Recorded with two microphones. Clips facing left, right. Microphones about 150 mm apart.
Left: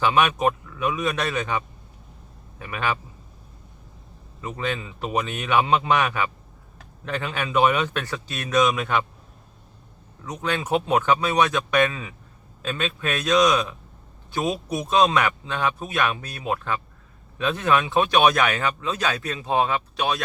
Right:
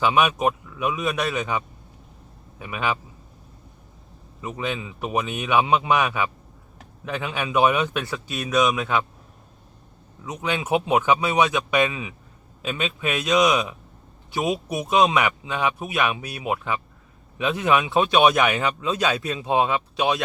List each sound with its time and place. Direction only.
0.0 s a man's voice: 10° right (ahead or behind)
4.4 s a man's voice: 10° right (ahead or behind)
10.2 s a man's voice: 10° right (ahead or behind)